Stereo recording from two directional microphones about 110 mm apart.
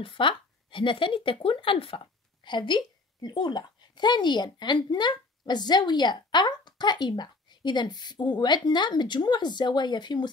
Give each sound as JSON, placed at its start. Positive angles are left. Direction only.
{"t": 0.0, "sound": "speech", "side_deg": 50}